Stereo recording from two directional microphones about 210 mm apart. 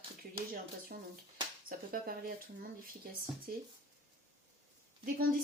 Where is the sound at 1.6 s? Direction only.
45° right (ahead or behind).